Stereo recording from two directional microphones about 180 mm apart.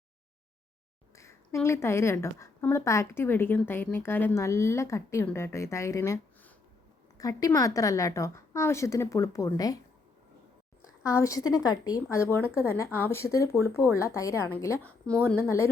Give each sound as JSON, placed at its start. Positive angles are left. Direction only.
{"t": 1.1, "sound": "a woman's voice", "side_deg": 15}
{"t": 11.0, "sound": "a woman's voice", "side_deg": 15}